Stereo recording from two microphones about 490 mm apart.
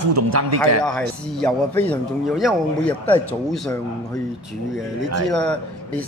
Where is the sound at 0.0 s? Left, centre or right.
Right.